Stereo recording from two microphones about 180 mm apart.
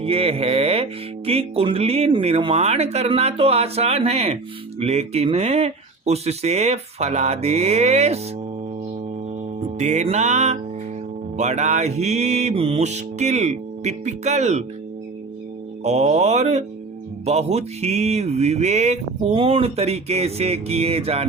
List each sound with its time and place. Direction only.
0.0 s speech: 30° right (ahead or behind)
9.6 s speech: 40° right (ahead or behind)
15.8 s speech: 35° right (ahead or behind)